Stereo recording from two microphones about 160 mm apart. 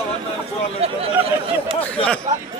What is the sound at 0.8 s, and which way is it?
Speech, 35° right (ahead or behind).